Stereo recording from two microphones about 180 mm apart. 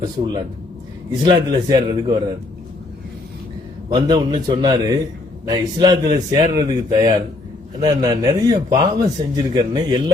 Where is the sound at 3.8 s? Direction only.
20° right (ahead or behind).